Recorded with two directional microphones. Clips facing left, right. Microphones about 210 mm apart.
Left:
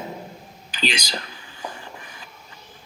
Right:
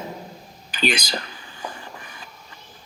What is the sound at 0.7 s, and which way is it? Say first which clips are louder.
Speech: right 4 dB; 55° right (ahead or behind).